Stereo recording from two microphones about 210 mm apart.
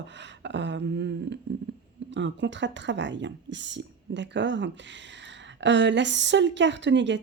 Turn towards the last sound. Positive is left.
turn(degrees=-60)  # may be behind; listen again after turning